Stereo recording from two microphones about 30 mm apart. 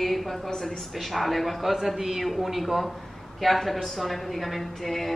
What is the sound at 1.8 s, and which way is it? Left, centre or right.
A man's voice, centre.